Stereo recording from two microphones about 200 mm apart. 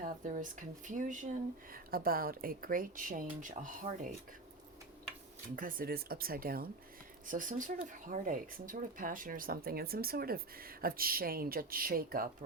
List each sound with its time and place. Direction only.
0.0 s speech: 40° right (ahead or behind)
5.5 s speech: 45° right (ahead or behind)